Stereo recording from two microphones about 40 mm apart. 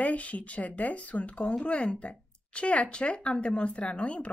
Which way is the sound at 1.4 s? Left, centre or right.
Centre.